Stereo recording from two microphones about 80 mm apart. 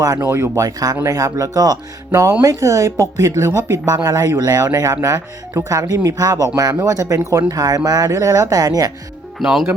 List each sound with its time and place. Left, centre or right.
0.0 s speech: right
3.9 s speech: right
9.4 s speech: centre